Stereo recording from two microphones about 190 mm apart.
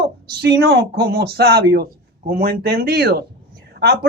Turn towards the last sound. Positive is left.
turn(degrees=-55)  # may be behind; listen again after turning